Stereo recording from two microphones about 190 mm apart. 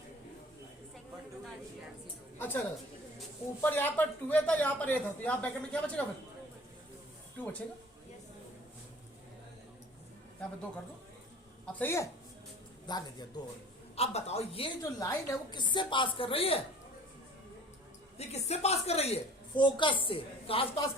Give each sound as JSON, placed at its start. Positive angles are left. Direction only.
{"t": 2.4, "sound": "speech", "side_deg": 10}
{"t": 11.8, "sound": "a woman's voice", "side_deg": 15}
{"t": 13.9, "sound": "a woman's voice", "side_deg": 35}
{"t": 14.8, "sound": "a woman's voice", "side_deg": 15}
{"t": 18.2, "sound": "a woman's voice", "side_deg": 35}